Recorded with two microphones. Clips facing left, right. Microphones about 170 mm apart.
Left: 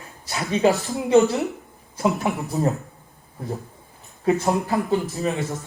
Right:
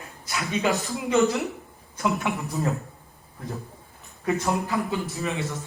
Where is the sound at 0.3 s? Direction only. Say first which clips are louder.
Left 5 dB; 35° left (ahead or behind).